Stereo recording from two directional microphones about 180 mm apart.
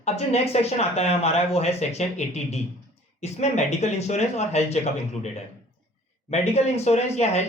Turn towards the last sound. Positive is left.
turn(degrees=35)  # may be behind; listen again after turning